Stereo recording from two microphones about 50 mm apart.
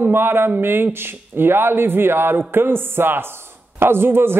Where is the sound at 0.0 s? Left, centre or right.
Right.